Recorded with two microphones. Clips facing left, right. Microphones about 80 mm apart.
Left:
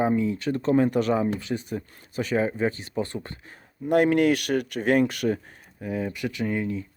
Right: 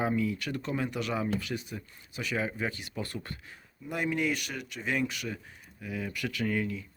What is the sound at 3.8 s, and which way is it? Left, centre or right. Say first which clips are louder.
Speech: left 11 dB; left.